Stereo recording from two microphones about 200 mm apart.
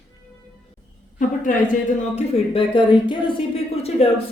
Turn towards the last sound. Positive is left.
turn(degrees=30)  # may be behind; listen again after turning